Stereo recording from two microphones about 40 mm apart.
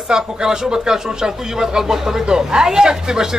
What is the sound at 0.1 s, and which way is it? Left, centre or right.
Speech, centre.